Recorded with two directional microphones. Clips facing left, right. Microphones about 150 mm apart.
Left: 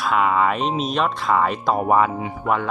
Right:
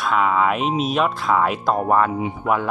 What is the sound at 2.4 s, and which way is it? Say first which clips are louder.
Speech: even; 5° right (ahead or behind).